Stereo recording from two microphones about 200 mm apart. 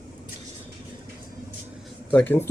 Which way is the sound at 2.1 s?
10° left (ahead or behind).